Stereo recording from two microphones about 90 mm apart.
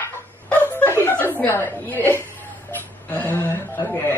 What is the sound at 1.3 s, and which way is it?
Speech, 25° left (ahead or behind).